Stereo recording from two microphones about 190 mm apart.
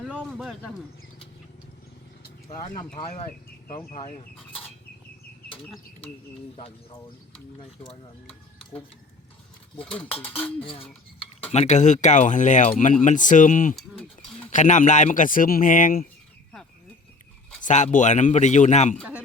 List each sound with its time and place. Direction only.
0.0 s a sound: centre (ahead or behind)
2.7 s speech: 25° left (ahead or behind)
7.6 s speech: 30° left (ahead or behind)
10.0 s speech: 10° left (ahead or behind)
10.6 s speech: 30° left (ahead or behind)
13.7 s speech: 5° left (ahead or behind)
14.5 s speech: 40° left (ahead or behind)
17.6 s speech: 40° left (ahead or behind)